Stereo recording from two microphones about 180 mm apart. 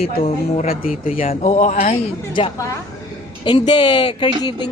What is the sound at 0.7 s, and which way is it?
Speech, 55° left (ahead or behind).